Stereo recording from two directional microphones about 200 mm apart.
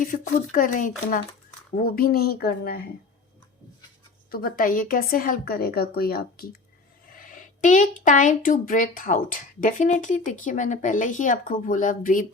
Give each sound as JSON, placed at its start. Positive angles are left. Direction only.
{"t": 0.0, "sound": "a woman's voice", "side_deg": 40}
{"t": 4.3, "sound": "a woman's voice", "side_deg": 45}